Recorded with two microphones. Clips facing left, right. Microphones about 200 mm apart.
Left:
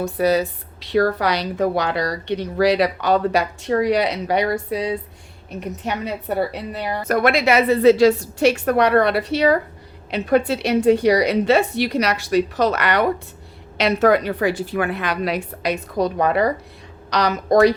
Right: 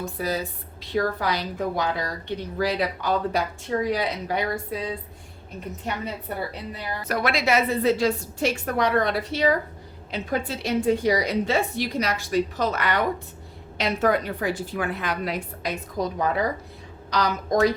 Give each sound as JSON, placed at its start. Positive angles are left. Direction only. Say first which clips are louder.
{"t": 0.0, "sound": "speech", "louder": "left 9 dB", "side_deg": 75}
{"t": 7.0, "sound": "speech", "louder": "left 7 dB", "side_deg": 50}